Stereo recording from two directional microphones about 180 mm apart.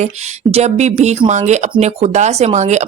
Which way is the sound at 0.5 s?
40° right (ahead or behind).